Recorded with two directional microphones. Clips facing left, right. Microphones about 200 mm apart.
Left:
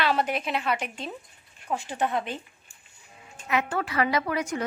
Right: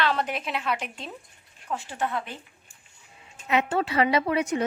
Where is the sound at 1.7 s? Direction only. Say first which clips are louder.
Left 2 dB; 15° left (ahead or behind).